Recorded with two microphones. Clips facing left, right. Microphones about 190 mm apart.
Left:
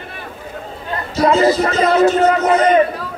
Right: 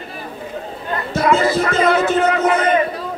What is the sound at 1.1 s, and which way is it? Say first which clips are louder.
Speech: left 3 dB; 55° right (ahead or behind).